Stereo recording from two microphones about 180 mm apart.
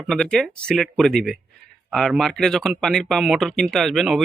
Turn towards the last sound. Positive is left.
turn(degrees=0)  # may be behind; listen again after turning